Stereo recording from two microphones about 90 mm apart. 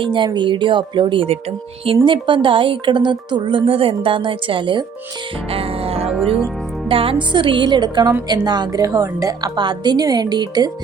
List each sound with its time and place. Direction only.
0.0 s music: 65° right (ahead or behind)
2.0 s speech: 65° right (ahead or behind)
5.5 s music: 90° right; by 8.1 s 55° right (ahead or behind)
8.3 s speech: 50° right (ahead or behind)
8.8 s a woman's voice: 40° right (ahead or behind)
9.6 s speech: 55° right (ahead or behind)